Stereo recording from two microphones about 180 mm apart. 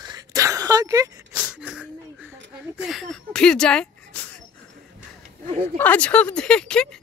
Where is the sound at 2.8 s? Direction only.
Centre (ahead or behind).